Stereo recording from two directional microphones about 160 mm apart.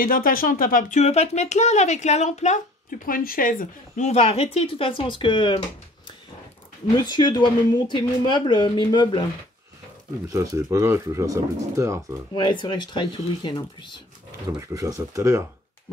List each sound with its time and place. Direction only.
0.0 s speech: 60° left (ahead or behind); by 5.6 s 30° left (ahead or behind)
7.0 s speech: 25° left (ahead or behind)
10.3 s speech: 20° right (ahead or behind)
12.4 s speech: 30° left (ahead or behind)
14.7 s speech: 20° right (ahead or behind)